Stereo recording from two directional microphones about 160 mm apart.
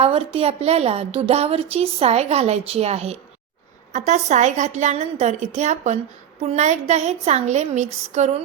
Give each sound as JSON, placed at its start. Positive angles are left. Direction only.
{"t": 0.0, "sound": "a woman's voice", "side_deg": -40}